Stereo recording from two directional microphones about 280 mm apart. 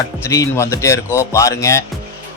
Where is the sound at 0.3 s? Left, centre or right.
Centre.